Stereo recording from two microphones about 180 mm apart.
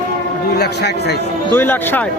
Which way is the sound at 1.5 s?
10° left (ahead or behind).